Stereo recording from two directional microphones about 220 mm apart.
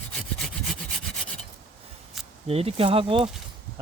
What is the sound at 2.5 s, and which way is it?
Speech, 25° right (ahead or behind).